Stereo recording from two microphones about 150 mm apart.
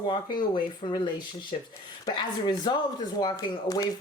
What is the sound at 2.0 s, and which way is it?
Speech, 30° left (ahead or behind).